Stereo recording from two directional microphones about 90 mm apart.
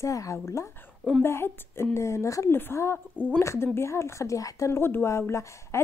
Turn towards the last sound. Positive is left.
turn(degrees=30)  # may be behind; listen again after turning